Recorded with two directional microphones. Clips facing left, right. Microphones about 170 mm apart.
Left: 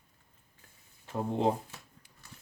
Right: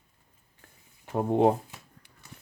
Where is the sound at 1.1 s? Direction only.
55° right (ahead or behind).